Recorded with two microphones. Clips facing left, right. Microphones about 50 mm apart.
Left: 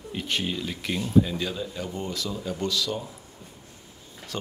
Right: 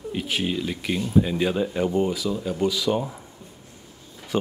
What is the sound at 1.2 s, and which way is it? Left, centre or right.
Speech, right.